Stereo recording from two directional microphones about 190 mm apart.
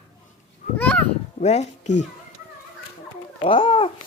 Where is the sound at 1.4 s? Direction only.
35° left (ahead or behind).